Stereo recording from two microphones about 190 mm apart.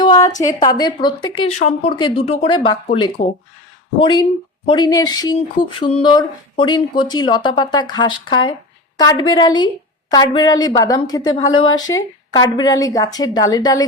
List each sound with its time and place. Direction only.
0.0 s speech: 20° left (ahead or behind)